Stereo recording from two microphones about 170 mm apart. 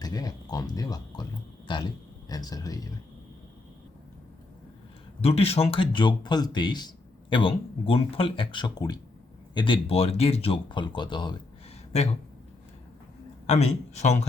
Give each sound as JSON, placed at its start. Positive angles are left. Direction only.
{"t": 0.0, "sound": "speech", "side_deg": 20}
{"t": 5.2, "sound": "speech", "side_deg": 35}
{"t": 13.5, "sound": "speech", "side_deg": 40}